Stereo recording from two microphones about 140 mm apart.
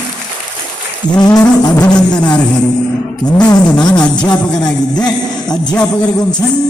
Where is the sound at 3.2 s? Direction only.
30° left (ahead or behind).